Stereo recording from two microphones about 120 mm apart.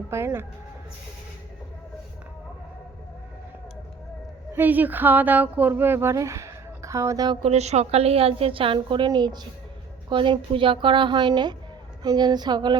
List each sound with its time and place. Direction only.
0.1 s speech: 20° right (ahead or behind)
4.5 s speech: 15° right (ahead or behind); by 7.3 s 30° right (ahead or behind)
7.4 s a woman's voice: 65° right (ahead or behind); by 12.8 s 35° right (ahead or behind)